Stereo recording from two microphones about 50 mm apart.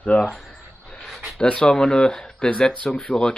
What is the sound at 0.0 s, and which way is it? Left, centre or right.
Speech, left.